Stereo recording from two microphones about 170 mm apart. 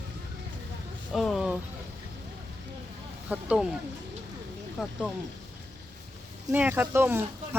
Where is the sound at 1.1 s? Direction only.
Centre (ahead or behind).